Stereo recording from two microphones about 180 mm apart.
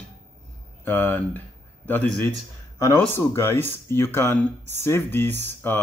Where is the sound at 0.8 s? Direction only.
10° left (ahead or behind).